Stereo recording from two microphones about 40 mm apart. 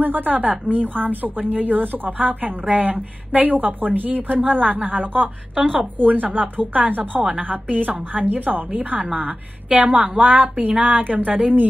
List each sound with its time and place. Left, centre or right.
0.0 s a woman's voice: right